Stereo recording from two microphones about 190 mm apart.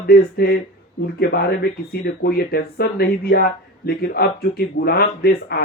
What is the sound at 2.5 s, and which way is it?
Speech, 55° left (ahead or behind).